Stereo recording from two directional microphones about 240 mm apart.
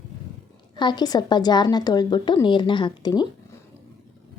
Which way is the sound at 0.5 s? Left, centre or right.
Centre.